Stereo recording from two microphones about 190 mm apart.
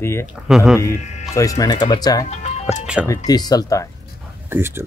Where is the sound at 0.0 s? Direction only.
15° left (ahead or behind).